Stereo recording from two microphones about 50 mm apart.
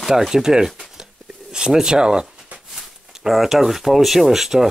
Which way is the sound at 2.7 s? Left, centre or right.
Centre.